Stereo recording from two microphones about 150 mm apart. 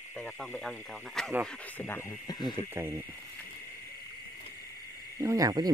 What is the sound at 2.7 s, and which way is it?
Speech, 15° right (ahead or behind).